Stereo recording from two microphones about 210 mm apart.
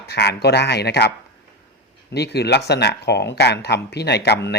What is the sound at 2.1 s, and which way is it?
Speech, 50° left (ahead or behind).